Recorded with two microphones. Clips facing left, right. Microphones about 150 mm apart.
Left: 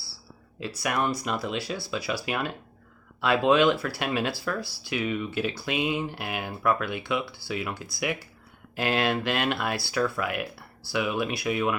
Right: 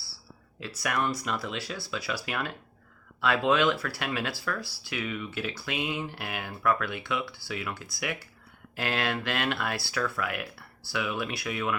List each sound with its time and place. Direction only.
0.6 s speech: 20° left (ahead or behind)